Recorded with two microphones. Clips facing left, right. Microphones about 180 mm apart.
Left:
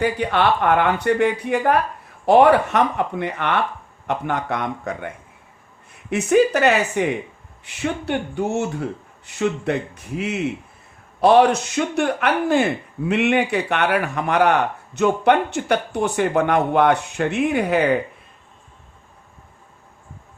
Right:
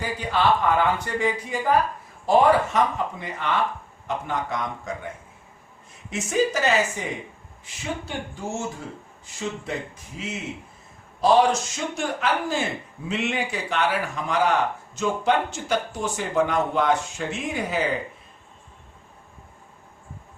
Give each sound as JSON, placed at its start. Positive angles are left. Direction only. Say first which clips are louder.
{"t": 0.0, "sound": "speech", "louder": "left 5 dB", "side_deg": 65}